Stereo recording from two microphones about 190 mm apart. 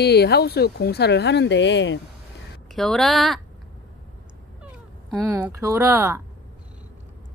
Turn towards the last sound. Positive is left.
turn(degrees=-15)  # may be behind; listen again after turning